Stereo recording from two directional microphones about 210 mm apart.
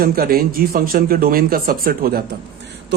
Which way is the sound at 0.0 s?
45° right (ahead or behind).